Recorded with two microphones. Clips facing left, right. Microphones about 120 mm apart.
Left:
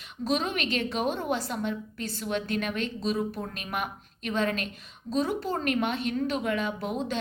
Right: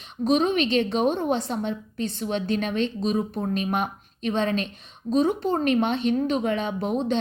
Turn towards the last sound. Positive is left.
turn(degrees=-25)  # may be behind; listen again after turning